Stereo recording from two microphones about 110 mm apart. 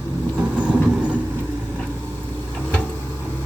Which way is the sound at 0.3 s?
10° right (ahead or behind).